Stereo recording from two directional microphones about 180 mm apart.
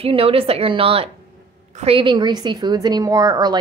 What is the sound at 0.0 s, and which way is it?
A woman's voice, 30° right (ahead or behind).